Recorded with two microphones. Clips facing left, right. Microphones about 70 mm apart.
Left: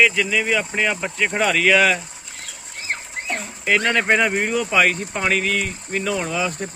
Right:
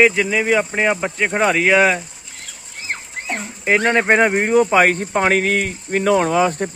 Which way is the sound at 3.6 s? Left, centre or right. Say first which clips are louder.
Right 3 dB; right.